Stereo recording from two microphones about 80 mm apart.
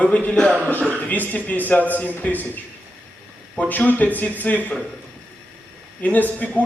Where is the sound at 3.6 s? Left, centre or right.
Left.